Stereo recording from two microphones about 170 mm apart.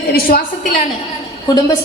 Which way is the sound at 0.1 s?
60° left (ahead or behind).